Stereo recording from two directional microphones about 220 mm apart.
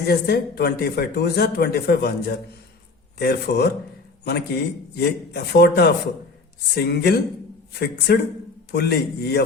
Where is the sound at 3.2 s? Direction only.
45° left (ahead or behind).